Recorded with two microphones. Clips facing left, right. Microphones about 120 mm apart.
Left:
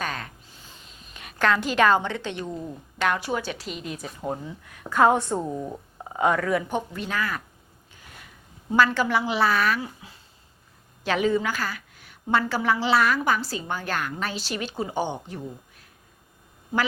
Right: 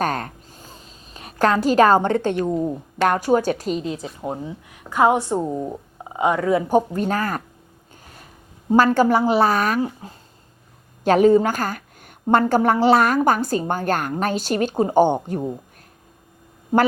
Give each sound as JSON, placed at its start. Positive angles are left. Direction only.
{"t": 0.0, "sound": "a sound", "side_deg": -45}
{"t": 2.4, "sound": "a woman's voice", "side_deg": -45}
{"t": 4.0, "sound": "speech", "side_deg": -20}
{"t": 6.7, "sound": "a woman's voice", "side_deg": -40}
{"t": 8.0, "sound": "a sound", "side_deg": -40}
{"t": 8.7, "sound": "a woman's voice", "side_deg": -40}